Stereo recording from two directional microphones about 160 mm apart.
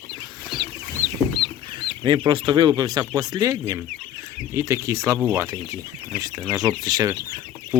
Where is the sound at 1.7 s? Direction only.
30° right (ahead or behind).